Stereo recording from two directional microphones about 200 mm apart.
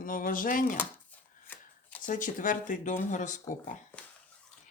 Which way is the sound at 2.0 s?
40° left (ahead or behind).